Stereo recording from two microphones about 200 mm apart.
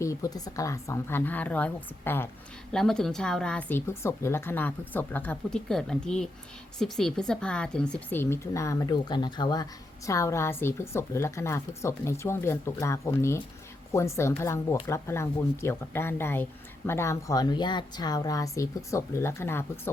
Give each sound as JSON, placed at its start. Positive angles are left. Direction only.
{"t": 0.0, "sound": "a woman's voice", "side_deg": 15}